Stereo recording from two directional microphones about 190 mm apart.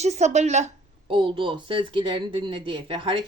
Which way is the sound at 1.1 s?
25° right (ahead or behind).